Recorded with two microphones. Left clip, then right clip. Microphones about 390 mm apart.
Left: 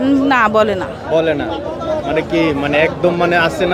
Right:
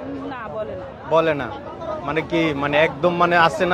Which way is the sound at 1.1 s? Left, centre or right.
Right.